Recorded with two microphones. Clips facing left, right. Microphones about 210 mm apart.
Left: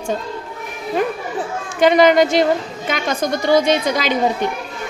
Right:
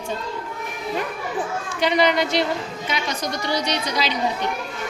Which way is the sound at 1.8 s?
50° left (ahead or behind).